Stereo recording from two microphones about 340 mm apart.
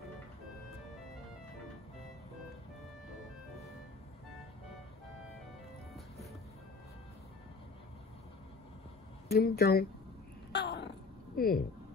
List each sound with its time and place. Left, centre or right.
9.3 s speech: left
10.5 s a sound: left
11.3 s speech: left